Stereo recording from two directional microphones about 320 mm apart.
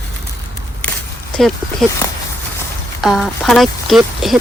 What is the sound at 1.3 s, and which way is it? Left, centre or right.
Speech, centre.